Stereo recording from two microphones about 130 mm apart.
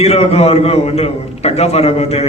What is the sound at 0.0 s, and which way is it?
A man's voice, 50° left (ahead or behind).